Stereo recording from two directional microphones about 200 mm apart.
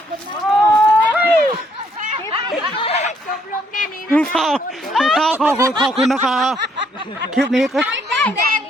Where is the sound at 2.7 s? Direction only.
30° left (ahead or behind).